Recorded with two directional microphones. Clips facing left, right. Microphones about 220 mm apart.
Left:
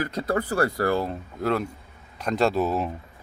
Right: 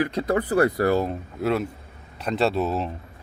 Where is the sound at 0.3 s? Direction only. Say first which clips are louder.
Right 3 dB; 20° right (ahead or behind).